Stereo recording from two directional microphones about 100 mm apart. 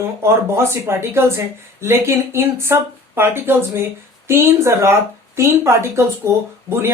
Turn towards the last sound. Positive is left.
turn(degrees=-25)  # may be behind; listen again after turning